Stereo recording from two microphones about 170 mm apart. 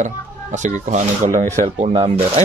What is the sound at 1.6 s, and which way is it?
Speech, 35° right (ahead or behind).